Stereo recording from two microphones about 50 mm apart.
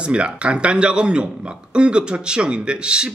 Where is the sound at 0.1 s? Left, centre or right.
Right.